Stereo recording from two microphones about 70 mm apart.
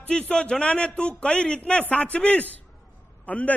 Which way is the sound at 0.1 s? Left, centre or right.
Centre.